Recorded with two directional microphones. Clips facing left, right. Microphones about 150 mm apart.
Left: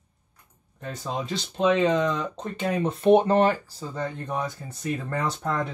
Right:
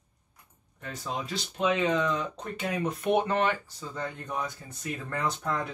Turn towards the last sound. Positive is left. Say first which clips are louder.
# left 3 dB
turn(degrees=30)  # may be behind; listen again after turning